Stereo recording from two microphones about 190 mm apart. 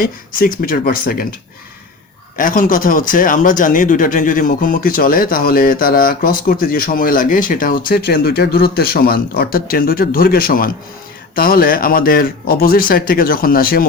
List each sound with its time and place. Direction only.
0.0 s speech: 50° left (ahead or behind)
2.4 s speech: 45° left (ahead or behind)